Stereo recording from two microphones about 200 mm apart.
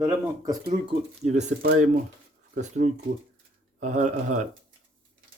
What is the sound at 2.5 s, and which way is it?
Speech, 35° right (ahead or behind).